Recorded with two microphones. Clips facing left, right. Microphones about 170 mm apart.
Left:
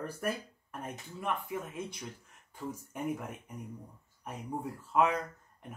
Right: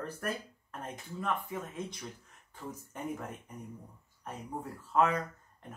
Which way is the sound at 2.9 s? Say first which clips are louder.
Left 3 dB; 10° left (ahead or behind).